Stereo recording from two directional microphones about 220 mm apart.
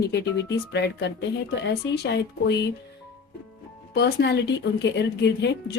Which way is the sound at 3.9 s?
50° left (ahead or behind).